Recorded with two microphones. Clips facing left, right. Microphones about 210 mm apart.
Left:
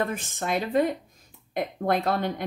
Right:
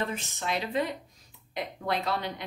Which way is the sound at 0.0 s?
50° left (ahead or behind).